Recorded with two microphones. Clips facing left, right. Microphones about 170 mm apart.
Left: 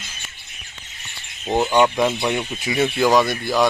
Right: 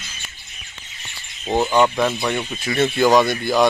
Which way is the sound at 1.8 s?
15° left (ahead or behind).